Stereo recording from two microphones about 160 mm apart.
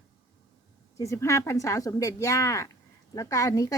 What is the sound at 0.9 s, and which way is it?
Speech, 20° left (ahead or behind).